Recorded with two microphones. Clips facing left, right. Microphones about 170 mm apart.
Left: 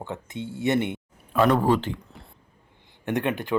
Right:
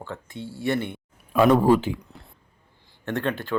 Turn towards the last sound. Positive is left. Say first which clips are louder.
# left 1 dB
turn(degrees=15)  # may be behind; listen again after turning